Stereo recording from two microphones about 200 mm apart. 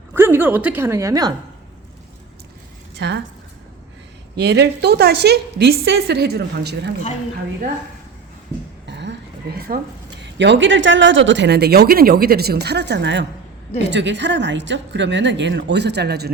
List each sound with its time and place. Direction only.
0.1 s a woman's voice: 10° right (ahead or behind)
3.0 s a woman's voice: 60° right (ahead or behind)
4.4 s a woman's voice: 55° right (ahead or behind)
8.9 s a sound: 60° right (ahead or behind)
10.3 s a woman's voice: 60° right (ahead or behind)